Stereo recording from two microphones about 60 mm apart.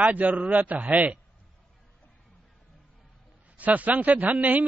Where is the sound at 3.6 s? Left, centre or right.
Right.